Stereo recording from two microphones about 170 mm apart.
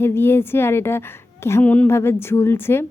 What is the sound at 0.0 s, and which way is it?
A woman's voice, 15° left (ahead or behind).